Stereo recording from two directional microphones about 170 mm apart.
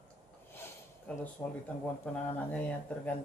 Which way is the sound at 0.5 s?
15° left (ahead or behind).